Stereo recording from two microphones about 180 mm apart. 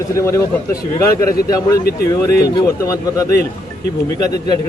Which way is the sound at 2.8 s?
20° left (ahead or behind).